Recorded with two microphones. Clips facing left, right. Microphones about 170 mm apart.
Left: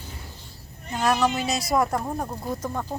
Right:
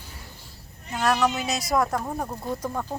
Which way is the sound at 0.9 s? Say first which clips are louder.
Left 1 dB; 5° left (ahead or behind).